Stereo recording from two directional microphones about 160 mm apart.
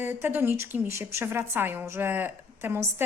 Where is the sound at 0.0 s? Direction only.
15° right (ahead or behind).